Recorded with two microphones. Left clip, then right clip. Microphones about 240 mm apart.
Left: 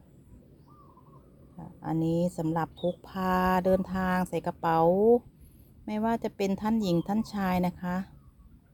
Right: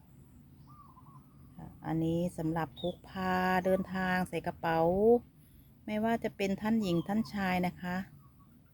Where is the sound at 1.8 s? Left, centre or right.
Centre.